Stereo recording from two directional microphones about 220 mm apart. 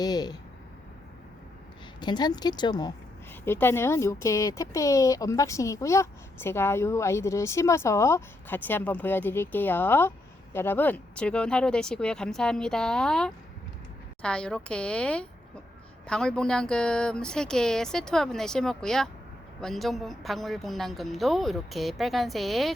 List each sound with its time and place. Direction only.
0.0 s a woman's voice: 20° left (ahead or behind)
2.0 s a woman's voice: 20° left (ahead or behind); by 22.7 s centre (ahead or behind)